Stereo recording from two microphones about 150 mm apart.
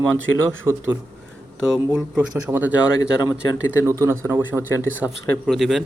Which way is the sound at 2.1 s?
10° right (ahead or behind).